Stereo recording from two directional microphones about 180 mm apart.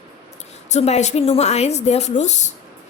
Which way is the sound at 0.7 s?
40° left (ahead or behind).